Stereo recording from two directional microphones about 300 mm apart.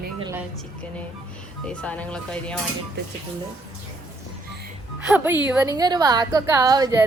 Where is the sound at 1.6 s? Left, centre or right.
Centre.